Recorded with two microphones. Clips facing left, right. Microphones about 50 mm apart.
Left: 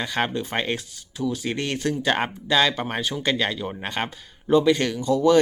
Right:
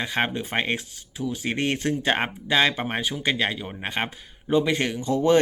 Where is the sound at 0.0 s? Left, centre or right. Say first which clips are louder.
Even; right.